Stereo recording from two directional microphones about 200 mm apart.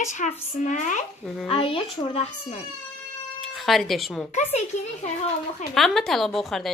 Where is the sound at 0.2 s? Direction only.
40° left (ahead or behind).